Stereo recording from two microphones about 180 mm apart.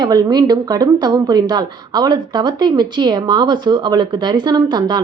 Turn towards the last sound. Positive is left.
turn(degrees=-25)  # may be behind; listen again after turning